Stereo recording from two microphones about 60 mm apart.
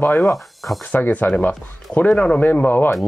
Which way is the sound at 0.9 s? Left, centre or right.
Left.